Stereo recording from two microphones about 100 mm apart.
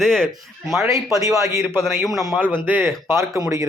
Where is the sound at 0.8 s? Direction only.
30° right (ahead or behind).